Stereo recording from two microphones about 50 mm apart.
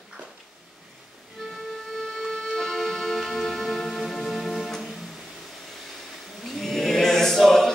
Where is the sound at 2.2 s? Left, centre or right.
Centre.